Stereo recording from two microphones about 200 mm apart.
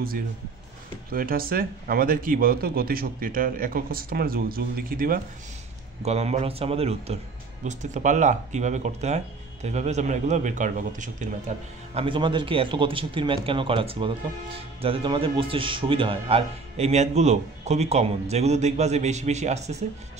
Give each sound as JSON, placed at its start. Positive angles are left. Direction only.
{"t": 1.1, "sound": "speech", "side_deg": -45}
{"t": 6.0, "sound": "speech", "side_deg": -30}